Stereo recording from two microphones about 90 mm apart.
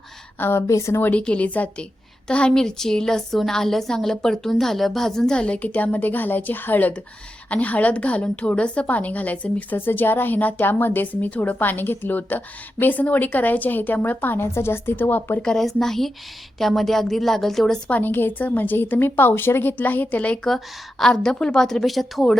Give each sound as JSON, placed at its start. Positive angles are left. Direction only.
{"t": 0.3, "sound": "a woman's voice", "side_deg": 25}
{"t": 1.0, "sound": "a woman's voice", "side_deg": 15}
{"t": 15.4, "sound": "a woman's voice", "side_deg": 5}
{"t": 17.8, "sound": "a woman's voice", "side_deg": 20}